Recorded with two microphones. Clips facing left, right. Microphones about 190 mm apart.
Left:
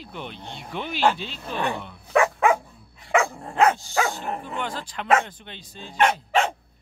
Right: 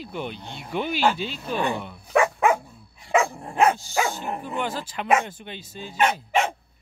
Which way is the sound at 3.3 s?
10° right (ahead or behind).